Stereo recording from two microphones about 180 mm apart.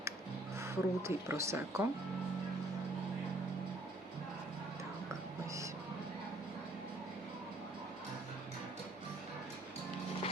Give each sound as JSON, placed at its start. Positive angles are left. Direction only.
{"t": 0.6, "sound": "a woman's voice", "side_deg": -15}